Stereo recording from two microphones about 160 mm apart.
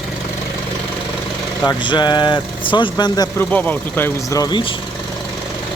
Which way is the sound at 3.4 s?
10° left (ahead or behind).